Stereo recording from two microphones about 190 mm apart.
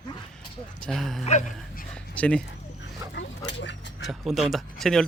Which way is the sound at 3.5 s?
70° left (ahead or behind).